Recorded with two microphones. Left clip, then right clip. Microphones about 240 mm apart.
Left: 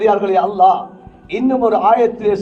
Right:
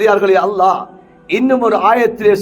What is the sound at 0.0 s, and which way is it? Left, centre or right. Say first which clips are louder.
A man's voice: right 3 dB; right.